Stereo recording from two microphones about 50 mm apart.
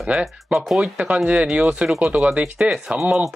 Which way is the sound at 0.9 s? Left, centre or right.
Right.